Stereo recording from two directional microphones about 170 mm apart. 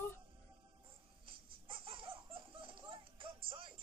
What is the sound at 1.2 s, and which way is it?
Baby laughter, 30° right (ahead or behind).